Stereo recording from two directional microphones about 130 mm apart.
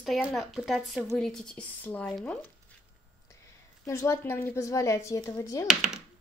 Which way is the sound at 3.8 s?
25° left (ahead or behind).